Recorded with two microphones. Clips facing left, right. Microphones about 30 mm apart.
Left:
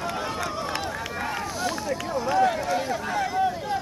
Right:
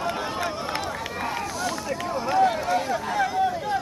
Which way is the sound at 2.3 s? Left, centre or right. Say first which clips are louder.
Right 2 dB; centre.